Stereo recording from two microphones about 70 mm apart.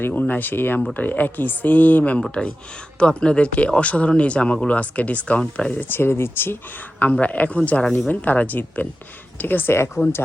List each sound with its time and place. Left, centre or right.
0.2 s speech: left
5.7 s speech: left